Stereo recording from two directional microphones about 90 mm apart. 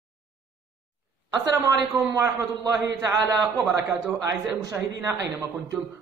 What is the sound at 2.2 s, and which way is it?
A man's voice, 35° right (ahead or behind).